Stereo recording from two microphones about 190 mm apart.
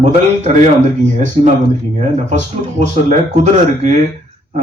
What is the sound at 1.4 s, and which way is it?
Speech, 40° right (ahead or behind).